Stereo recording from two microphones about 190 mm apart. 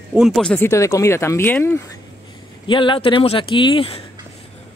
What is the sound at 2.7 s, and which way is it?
Speech, 25° left (ahead or behind).